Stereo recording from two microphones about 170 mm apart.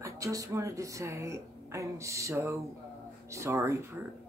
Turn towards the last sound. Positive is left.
turn(degrees=-15)  # may be behind; listen again after turning